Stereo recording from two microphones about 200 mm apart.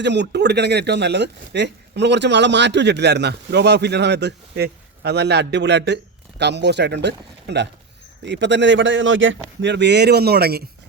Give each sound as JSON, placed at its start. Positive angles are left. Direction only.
{"t": 0.0, "sound": "speech", "side_deg": -60}